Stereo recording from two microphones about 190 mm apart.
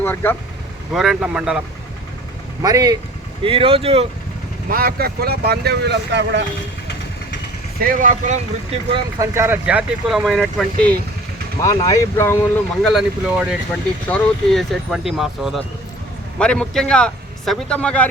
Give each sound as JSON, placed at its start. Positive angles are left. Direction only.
{"t": 0.0, "sound": "speech", "side_deg": 10}
{"t": 0.9, "sound": "a man's voice", "side_deg": 0}
{"t": 2.6, "sound": "speech", "side_deg": -20}
{"t": 4.7, "sound": "speech", "side_deg": -50}
{"t": 7.9, "sound": "speech", "side_deg": -40}
{"t": 9.1, "sound": "speech", "side_deg": -15}
{"t": 11.6, "sound": "speech", "side_deg": 20}
{"t": 12.8, "sound": "a man's voice", "side_deg": 0}